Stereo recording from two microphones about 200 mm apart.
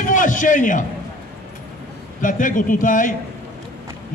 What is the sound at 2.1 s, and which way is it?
A man's voice, 40° left (ahead or behind).